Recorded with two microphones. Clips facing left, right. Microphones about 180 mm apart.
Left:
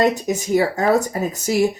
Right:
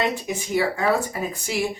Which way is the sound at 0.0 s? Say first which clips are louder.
Left 7 dB; 40° left (ahead or behind).